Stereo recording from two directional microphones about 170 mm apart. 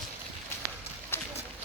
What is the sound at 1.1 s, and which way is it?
Run, 15° left (ahead or behind).